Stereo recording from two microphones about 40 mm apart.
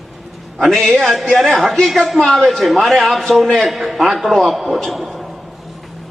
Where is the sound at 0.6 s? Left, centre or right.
Centre.